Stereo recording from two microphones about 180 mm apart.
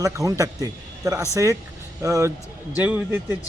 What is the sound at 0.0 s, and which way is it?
A man's voice, 20° right (ahead or behind).